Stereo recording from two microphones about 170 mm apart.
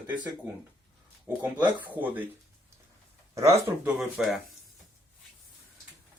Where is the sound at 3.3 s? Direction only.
15° right (ahead or behind).